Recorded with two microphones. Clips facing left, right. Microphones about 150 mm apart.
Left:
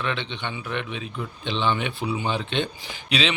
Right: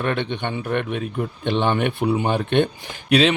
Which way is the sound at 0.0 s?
50° right (ahead or behind).